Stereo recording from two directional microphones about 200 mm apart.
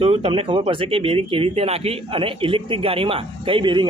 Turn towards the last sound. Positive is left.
turn(degrees=-25)  # may be behind; listen again after turning